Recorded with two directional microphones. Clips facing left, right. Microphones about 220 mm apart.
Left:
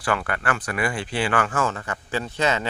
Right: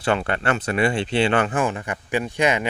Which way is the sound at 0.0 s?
25° right (ahead or behind).